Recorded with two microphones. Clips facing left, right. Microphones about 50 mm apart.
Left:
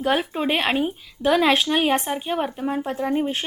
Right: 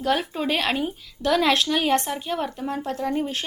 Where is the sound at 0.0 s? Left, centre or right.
Left.